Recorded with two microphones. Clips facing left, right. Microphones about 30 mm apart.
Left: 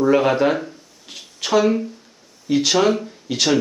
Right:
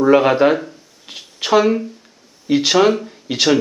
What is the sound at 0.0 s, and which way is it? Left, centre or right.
A man's voice, centre.